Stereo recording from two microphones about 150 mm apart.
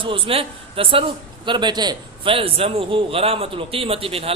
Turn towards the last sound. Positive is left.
turn(degrees=-40)  # may be behind; listen again after turning